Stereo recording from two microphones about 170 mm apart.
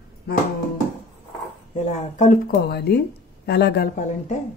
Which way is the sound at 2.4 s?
70° left (ahead or behind).